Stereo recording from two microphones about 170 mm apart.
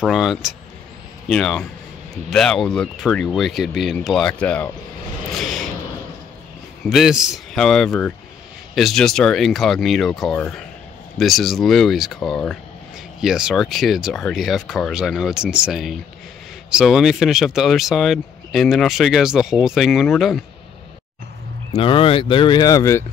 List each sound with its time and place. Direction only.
0.0 s speech: centre (ahead or behind)
5.4 s a sound: centre (ahead or behind)
6.9 s speech: centre (ahead or behind)
21.7 s speech: 30° left (ahead or behind)